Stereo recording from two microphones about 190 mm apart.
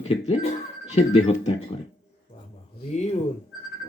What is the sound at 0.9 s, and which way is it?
Speech, 35° left (ahead or behind).